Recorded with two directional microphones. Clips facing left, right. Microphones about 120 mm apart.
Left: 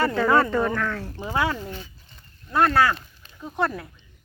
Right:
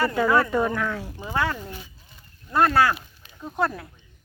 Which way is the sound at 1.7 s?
5° right (ahead or behind).